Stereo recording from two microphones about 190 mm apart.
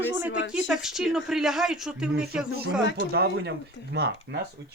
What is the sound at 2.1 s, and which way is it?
Speech, 55° right (ahead or behind).